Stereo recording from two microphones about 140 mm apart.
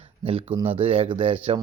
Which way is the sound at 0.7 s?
40° right (ahead or behind).